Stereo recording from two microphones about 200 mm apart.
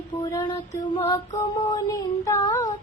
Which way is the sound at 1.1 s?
20° left (ahead or behind).